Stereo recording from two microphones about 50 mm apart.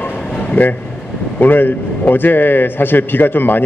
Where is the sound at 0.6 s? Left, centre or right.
Left.